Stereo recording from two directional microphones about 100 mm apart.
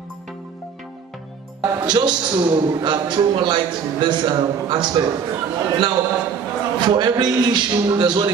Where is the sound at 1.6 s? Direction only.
40° right (ahead or behind).